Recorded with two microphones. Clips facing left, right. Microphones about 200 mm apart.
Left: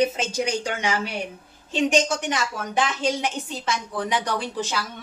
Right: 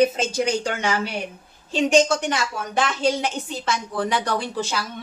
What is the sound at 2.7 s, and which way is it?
A woman's voice, 15° left (ahead or behind).